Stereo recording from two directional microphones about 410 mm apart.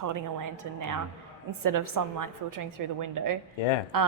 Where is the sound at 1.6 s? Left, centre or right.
Right.